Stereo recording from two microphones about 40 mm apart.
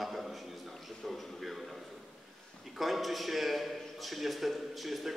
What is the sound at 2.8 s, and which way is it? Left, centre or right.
A man's voice, centre.